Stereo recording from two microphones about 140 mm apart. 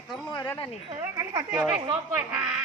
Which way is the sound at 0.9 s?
30° right (ahead or behind).